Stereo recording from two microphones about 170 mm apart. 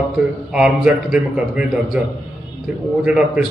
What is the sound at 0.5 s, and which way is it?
A man's voice, 5° right (ahead or behind).